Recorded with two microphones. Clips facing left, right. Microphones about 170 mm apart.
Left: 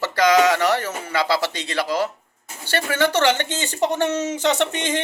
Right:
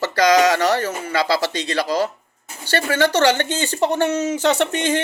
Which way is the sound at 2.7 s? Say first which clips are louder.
Right 2 dB; 15° left (ahead or behind).